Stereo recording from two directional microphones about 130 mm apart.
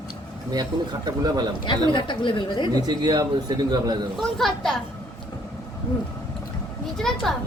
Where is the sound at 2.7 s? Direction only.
30° right (ahead or behind).